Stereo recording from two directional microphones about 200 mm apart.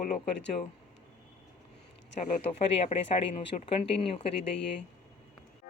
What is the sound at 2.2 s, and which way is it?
Speech, 35° left (ahead or behind).